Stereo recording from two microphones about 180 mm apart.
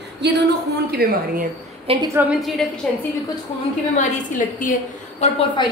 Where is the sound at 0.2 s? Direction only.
70° right (ahead or behind).